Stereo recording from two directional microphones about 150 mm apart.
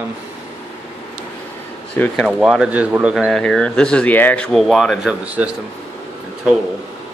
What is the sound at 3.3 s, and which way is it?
Speech, 5° left (ahead or behind).